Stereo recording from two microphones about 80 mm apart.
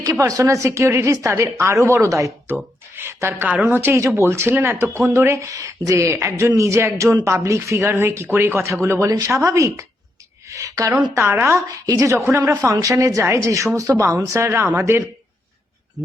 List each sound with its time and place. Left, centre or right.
0.3 s a woman's voice: right
10.4 s a sound: right
11.1 s speech: right
12.2 s speech: right